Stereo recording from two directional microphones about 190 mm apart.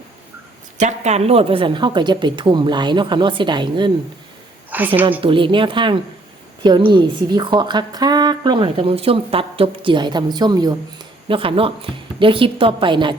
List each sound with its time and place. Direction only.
0.8 s a woman's voice: 35° right (ahead or behind)
4.7 s a sound: 10° right (ahead or behind)
5.2 s a woman's voice: 25° right (ahead or behind)